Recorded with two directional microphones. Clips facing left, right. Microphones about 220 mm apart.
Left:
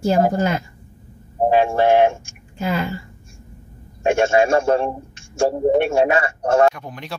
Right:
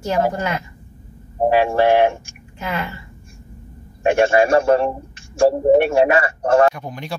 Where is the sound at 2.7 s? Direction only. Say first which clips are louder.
Left 2 dB; 40° left (ahead or behind).